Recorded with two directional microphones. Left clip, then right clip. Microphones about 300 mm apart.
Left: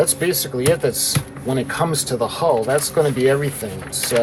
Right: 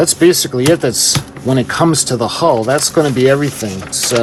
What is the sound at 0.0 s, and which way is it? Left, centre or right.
Speech, right.